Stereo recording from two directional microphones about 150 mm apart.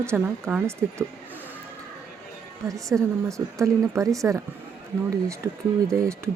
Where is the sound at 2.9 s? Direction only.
10° right (ahead or behind).